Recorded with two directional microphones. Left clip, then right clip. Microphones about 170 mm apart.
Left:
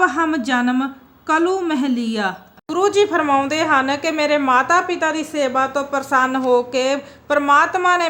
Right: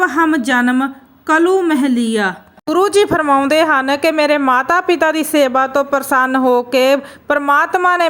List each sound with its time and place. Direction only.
0.0 s a woman's voice: 30° right (ahead or behind); by 8.0 s 45° right (ahead or behind)